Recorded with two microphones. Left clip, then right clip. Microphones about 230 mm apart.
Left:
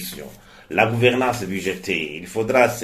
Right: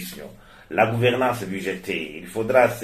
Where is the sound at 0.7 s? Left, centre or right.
Left.